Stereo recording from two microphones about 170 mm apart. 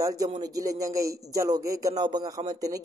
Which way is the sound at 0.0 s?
20° right (ahead or behind).